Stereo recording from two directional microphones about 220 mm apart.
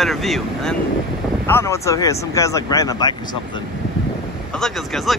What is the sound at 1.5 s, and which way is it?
Speech, 10° left (ahead or behind).